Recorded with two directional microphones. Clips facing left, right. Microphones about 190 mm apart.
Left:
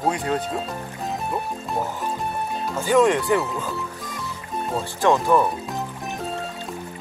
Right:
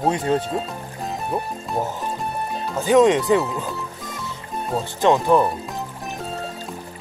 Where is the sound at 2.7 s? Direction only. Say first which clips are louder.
Right 3 dB; 20° right (ahead or behind).